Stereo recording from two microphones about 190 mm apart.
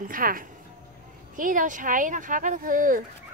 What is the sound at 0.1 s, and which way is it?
Speech, 45° right (ahead or behind).